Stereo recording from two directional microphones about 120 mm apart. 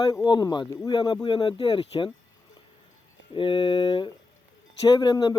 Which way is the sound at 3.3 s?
45° left (ahead or behind).